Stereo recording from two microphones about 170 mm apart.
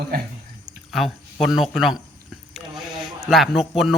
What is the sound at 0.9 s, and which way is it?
Speech, centre (ahead or behind).